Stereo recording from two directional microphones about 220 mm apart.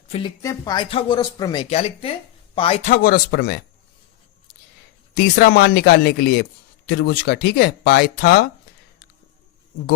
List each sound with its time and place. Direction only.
0.4 s speech: 15° left (ahead or behind); by 3.6 s 45° left (ahead or behind)
5.1 s speech: 45° left (ahead or behind)